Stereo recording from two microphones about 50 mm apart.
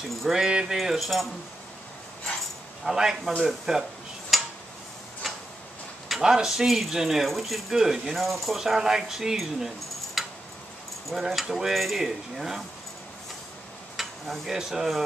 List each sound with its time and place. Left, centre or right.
0.2 s speech: centre
0.5 s speech: centre
0.7 s speech: centre
2.8 s speech: centre
4.3 s a sound: centre
5.2 s tick-tock: centre
6.0 s speech: centre
10.2 s a sound: centre
11.1 s speech: centre
13.9 s speech: centre